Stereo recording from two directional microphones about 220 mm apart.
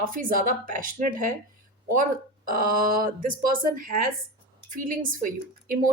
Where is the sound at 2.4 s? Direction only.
40° right (ahead or behind).